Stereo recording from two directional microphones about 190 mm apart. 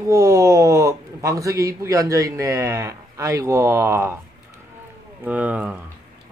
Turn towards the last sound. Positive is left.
turn(degrees=-5)  # may be behind; listen again after turning